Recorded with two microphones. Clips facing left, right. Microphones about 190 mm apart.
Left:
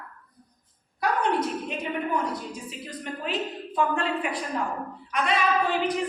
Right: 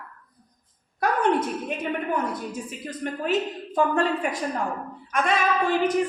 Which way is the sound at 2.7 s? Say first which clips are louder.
Right 4 dB; 50° right (ahead or behind).